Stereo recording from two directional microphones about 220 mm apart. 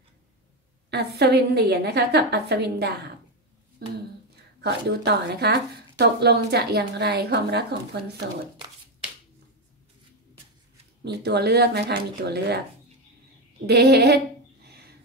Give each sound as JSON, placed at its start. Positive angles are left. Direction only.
{"t": 0.8, "sound": "speech", "side_deg": -50}
{"t": 4.6, "sound": "speech", "side_deg": -50}
{"t": 11.1, "sound": "speech", "side_deg": -50}
{"t": 13.7, "sound": "speech", "side_deg": -50}